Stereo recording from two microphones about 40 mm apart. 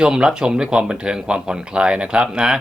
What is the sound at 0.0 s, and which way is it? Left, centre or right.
Speech, right.